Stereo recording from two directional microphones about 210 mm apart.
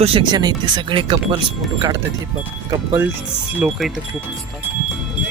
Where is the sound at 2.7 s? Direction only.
20° right (ahead or behind).